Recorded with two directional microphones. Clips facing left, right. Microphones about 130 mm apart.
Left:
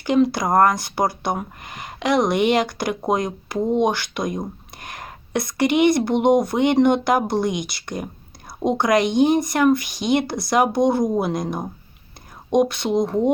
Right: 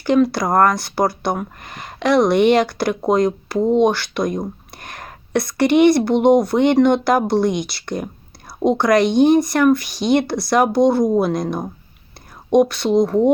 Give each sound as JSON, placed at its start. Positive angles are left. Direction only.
{"t": 0.0, "sound": "speech", "side_deg": 20}